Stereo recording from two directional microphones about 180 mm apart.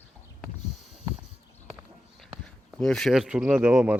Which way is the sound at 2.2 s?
Centre (ahead or behind).